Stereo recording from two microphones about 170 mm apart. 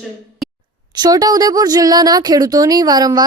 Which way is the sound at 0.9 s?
25° right (ahead or behind).